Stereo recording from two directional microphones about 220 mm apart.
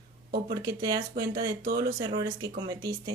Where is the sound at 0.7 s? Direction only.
20° right (ahead or behind).